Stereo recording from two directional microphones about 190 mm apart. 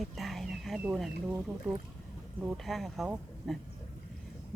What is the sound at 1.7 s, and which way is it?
Speech, 10° right (ahead or behind).